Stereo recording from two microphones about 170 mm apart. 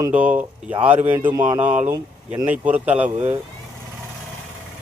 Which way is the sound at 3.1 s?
40° right (ahead or behind).